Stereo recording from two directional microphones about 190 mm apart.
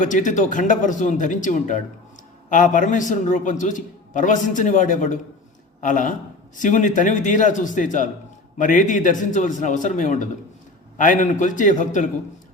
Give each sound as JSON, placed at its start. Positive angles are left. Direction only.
{"t": 0.0, "sound": "a man's voice", "side_deg": 40}